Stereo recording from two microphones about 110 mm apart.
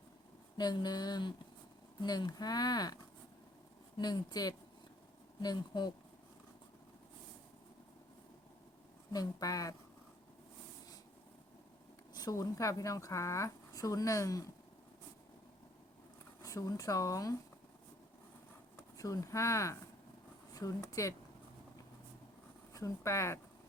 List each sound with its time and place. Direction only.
0.5 s speech: 40° left (ahead or behind)
9.1 s speech: 35° left (ahead or behind)
12.1 s speech: 35° left (ahead or behind)
16.4 s speech: 30° left (ahead or behind)
18.9 s speech: 30° left (ahead or behind)
22.7 s speech: 30° left (ahead or behind)